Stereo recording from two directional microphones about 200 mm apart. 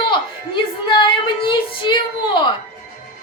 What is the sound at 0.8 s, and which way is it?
Female singing, 25° left (ahead or behind).